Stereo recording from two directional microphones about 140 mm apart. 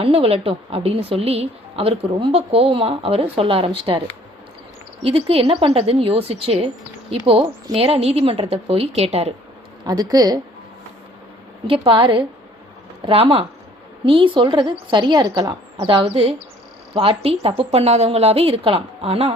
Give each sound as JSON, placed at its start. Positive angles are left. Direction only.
{"t": 0.0, "sound": "a woman's voice", "side_deg": -45}
{"t": 5.0, "sound": "a woman's voice", "side_deg": -40}
{"t": 9.8, "sound": "speech", "side_deg": -25}
{"t": 11.9, "sound": "a woman's voice", "side_deg": -40}